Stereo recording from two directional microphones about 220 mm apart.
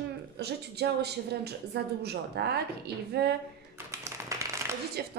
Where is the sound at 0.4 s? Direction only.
50° right (ahead or behind).